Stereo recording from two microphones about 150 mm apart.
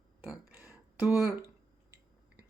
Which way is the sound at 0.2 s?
15° right (ahead or behind).